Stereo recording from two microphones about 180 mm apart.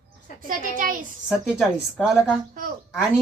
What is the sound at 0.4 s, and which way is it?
Speech, 50° right (ahead or behind).